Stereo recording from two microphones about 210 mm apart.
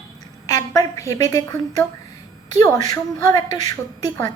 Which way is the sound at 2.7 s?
15° left (ahead or behind).